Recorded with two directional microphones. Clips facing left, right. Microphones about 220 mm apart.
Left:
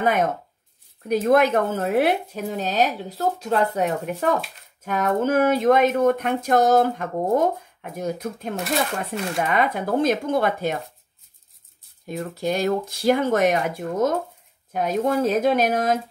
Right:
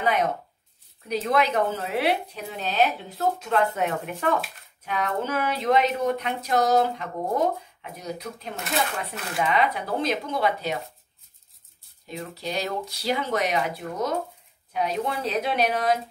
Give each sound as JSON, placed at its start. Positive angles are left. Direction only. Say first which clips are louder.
{"t": 0.0, "sound": "speech", "louder": "left 3 dB", "side_deg": 50}
{"t": 12.1, "sound": "speech", "louder": "left 7 dB", "side_deg": 50}